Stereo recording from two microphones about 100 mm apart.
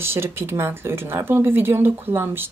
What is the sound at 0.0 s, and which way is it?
Speech, 25° right (ahead or behind).